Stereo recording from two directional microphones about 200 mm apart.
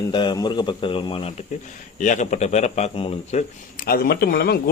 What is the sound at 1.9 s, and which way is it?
Speech, 40° left (ahead or behind).